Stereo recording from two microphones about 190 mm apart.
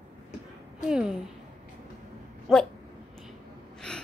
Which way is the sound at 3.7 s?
5° left (ahead or behind).